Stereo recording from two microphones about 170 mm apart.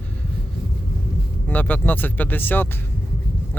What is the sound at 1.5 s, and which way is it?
Speech, 10° left (ahead or behind).